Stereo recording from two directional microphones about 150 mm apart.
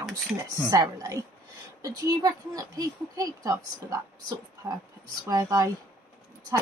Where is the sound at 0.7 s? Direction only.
20° right (ahead or behind).